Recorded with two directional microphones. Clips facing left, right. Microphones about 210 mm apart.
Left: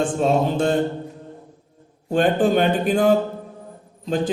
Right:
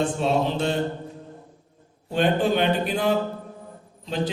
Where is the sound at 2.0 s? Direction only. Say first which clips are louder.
Left 3 dB; 50° left (ahead or behind).